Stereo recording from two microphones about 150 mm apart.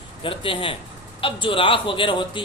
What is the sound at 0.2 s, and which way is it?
A man's voice, 35° left (ahead or behind).